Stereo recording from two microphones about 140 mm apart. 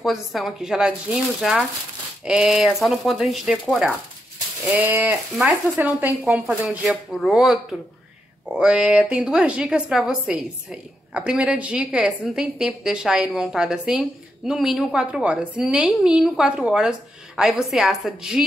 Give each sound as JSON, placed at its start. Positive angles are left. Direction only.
{"t": 0.0, "sound": "a woman's voice", "side_deg": 0}
{"t": 4.7, "sound": "a sound", "side_deg": -10}
{"t": 5.0, "sound": "a woman's voice", "side_deg": 0}